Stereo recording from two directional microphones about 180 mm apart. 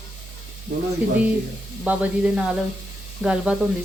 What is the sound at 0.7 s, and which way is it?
Speech, 50° right (ahead or behind).